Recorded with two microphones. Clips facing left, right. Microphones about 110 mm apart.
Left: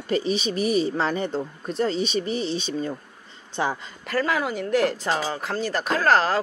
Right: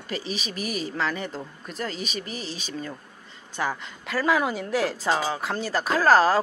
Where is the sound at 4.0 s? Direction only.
5° right (ahead or behind).